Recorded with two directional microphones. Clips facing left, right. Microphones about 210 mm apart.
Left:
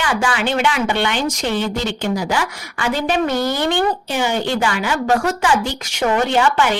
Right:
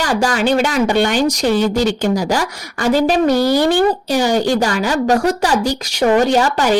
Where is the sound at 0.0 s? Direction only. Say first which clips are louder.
Right 4 dB; 40° right (ahead or behind).